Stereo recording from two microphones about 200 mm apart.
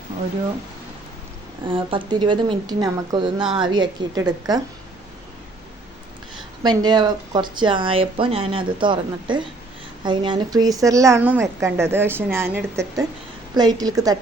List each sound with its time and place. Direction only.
1.6 s speech: 25° right (ahead or behind)
6.6 s a woman's voice: 20° right (ahead or behind)